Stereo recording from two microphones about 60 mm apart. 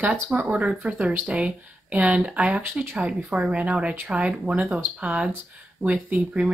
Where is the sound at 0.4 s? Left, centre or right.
Right.